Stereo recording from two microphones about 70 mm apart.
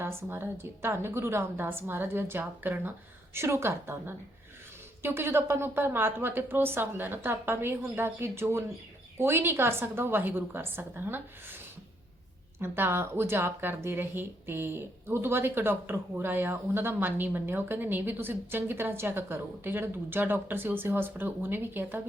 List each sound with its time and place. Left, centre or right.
0.0 s speech: right
3.3 s speech: right
12.5 s speech: right